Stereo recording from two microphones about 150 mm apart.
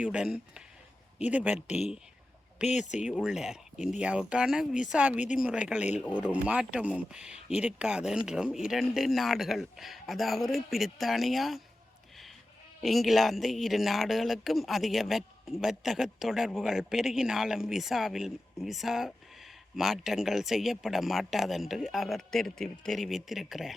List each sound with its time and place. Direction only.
0.0 s speech: 5° right (ahead or behind)
1.6 s speech: 45° left (ahead or behind)
3.0 s speech: 5° right (ahead or behind)
12.8 s speech: centre (ahead or behind)